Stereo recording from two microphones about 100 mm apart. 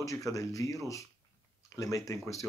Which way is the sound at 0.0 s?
35° left (ahead or behind).